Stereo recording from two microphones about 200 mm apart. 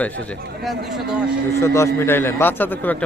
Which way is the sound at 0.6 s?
Centre (ahead or behind).